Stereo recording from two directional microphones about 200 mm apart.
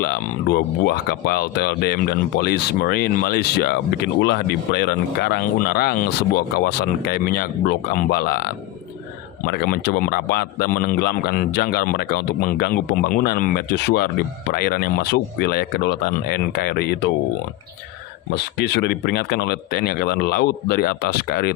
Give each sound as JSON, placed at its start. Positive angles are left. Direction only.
{"t": 0.0, "sound": "speech", "side_deg": 50}
{"t": 18.5, "sound": "speech", "side_deg": 55}